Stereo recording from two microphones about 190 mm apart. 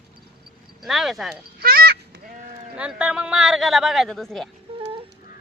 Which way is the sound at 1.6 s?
50° right (ahead or behind).